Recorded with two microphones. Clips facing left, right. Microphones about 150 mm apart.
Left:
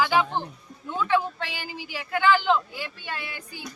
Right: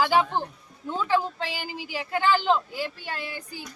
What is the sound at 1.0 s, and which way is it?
Speech, 35° right (ahead or behind).